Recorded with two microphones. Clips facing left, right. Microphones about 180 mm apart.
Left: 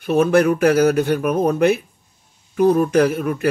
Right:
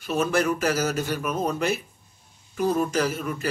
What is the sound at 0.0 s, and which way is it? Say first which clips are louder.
Speech: left 8 dB; 60° left (ahead or behind).